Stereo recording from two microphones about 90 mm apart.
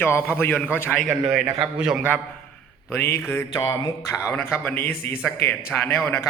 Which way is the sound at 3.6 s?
55° left (ahead or behind).